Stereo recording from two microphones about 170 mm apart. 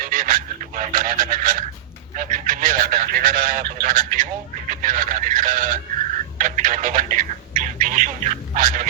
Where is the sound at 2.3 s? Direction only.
50° right (ahead or behind).